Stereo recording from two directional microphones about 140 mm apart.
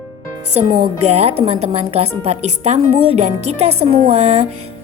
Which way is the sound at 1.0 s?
50° right (ahead or behind).